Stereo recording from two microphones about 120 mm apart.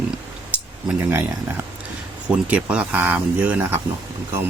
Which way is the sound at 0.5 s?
15° right (ahead or behind).